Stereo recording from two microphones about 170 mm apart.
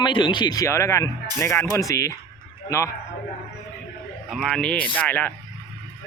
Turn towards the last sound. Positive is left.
turn(degrees=10)  # may be behind; listen again after turning